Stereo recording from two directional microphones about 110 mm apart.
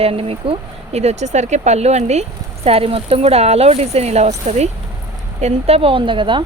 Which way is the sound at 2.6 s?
60° right (ahead or behind).